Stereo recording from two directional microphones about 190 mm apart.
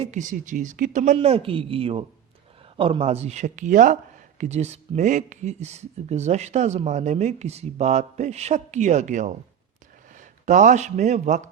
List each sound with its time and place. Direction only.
0.0 s speech: 40° right (ahead or behind)